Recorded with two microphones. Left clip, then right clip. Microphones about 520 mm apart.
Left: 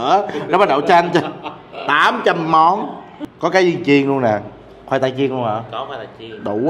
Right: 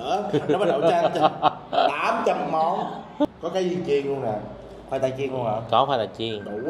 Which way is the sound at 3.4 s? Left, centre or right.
Left.